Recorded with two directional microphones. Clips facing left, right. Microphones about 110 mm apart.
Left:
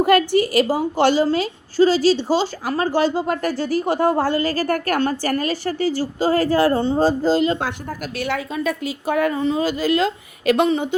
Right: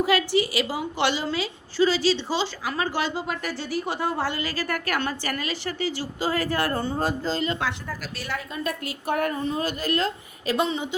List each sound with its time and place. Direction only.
0.0 s a woman's voice: 50° left (ahead or behind)
8.1 s a woman's voice: 75° left (ahead or behind)
9.3 s a woman's voice: 90° left; by 10.7 s 70° left (ahead or behind)